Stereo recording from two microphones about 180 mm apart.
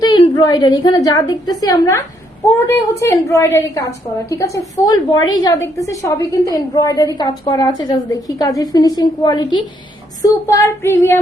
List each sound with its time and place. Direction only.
0.0 s a woman's voice: 25° left (ahead or behind)